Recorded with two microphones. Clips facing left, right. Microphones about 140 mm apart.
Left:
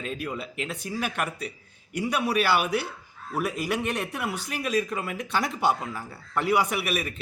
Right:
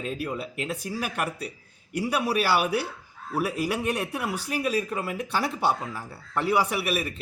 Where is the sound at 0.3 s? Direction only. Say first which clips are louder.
Right 1 dB; 45° right (ahead or behind).